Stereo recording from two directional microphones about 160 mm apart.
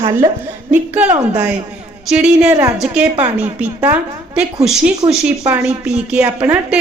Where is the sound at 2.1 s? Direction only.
5° right (ahead or behind).